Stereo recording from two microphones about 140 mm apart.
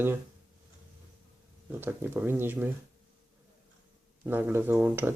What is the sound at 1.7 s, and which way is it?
Speech, 15° right (ahead or behind).